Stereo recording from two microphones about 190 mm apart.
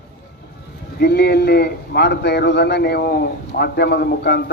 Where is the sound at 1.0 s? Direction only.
60° left (ahead or behind).